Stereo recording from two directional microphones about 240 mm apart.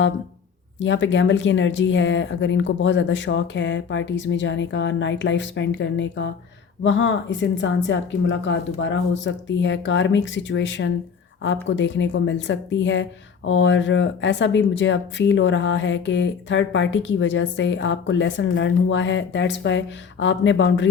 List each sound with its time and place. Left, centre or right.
0.8 s speech: left